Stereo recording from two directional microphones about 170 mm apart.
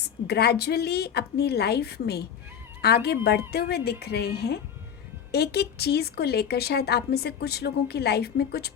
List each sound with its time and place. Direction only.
0.3 s speech: 70° left (ahead or behind)